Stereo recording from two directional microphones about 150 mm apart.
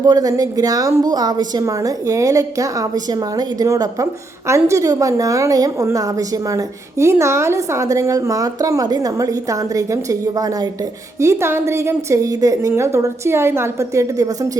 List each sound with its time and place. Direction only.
0.0 s a woman's voice: 25° right (ahead or behind)